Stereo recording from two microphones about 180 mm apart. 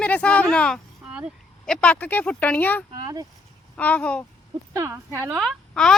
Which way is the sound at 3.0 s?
20° right (ahead or behind).